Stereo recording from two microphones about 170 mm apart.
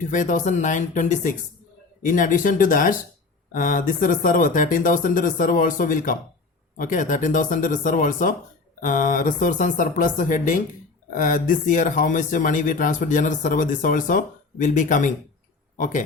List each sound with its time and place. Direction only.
0.1 s speech: 50° left (ahead or behind)